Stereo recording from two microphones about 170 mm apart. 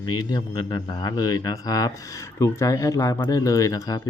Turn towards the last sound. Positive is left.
turn(degrees=20)  # may be behind; listen again after turning